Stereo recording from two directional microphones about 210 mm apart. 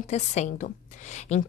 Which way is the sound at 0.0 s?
35° left (ahead or behind).